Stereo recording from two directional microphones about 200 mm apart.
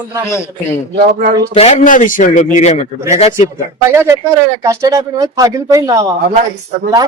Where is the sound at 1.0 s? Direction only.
50° right (ahead or behind).